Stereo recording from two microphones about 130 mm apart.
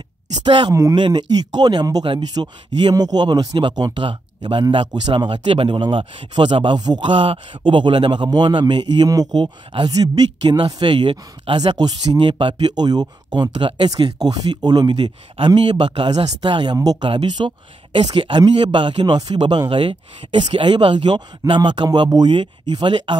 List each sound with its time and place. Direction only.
0.5 s speech: 40° right (ahead or behind)
14.0 s speech: 30° right (ahead or behind)
16.7 s speech: 25° right (ahead or behind)
17.0 s speech: 40° right (ahead or behind)